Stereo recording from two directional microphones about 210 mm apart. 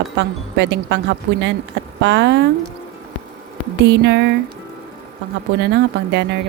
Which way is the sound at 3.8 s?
55° right (ahead or behind).